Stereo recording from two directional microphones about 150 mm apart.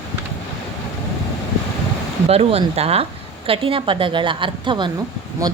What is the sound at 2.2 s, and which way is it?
Speech, 40° right (ahead or behind).